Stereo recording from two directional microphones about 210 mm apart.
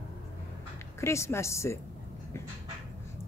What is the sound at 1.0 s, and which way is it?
Speech, 10° left (ahead or behind).